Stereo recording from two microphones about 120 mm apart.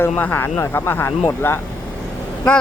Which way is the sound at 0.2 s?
15° left (ahead or behind).